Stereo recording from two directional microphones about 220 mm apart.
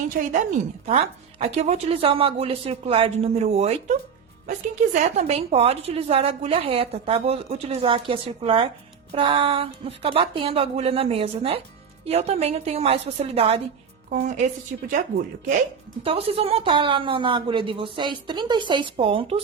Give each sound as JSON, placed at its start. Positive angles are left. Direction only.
{"t": 0.2, "sound": "a woman's voice", "side_deg": -40}
{"t": 0.9, "sound": "a woman's voice", "side_deg": -25}
{"t": 16.0, "sound": "a woman's voice", "side_deg": -25}